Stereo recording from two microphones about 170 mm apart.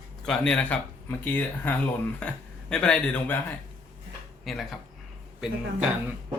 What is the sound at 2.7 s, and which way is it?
Speech, 5° left (ahead or behind).